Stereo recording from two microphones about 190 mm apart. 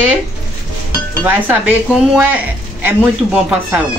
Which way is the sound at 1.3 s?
10° right (ahead or behind).